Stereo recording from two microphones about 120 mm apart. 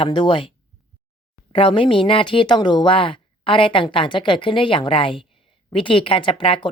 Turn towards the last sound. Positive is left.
turn(degrees=45)  # may be behind; listen again after turning